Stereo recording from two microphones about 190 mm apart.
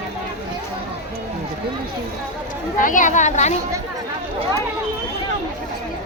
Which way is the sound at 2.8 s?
45° left (ahead or behind).